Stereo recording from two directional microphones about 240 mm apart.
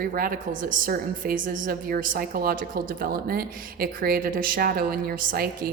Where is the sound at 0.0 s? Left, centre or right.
Right.